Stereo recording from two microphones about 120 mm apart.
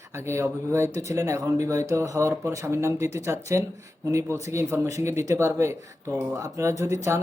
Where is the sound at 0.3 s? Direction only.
25° right (ahead or behind).